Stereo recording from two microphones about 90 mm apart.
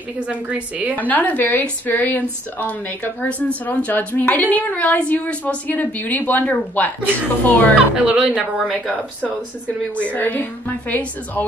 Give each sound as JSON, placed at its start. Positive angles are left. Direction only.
{"t": 0.2, "sound": "speech", "side_deg": -15}
{"t": 0.9, "sound": "a woman's voice", "side_deg": 20}
{"t": 7.7, "sound": "speech", "side_deg": -10}
{"t": 8.5, "sound": "speech", "side_deg": 0}
{"t": 9.9, "sound": "a woman's voice", "side_deg": 20}